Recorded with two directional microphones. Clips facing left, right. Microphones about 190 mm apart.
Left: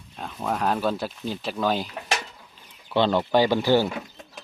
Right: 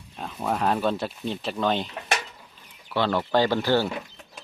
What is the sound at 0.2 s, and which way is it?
Speech, 5° right (ahead or behind).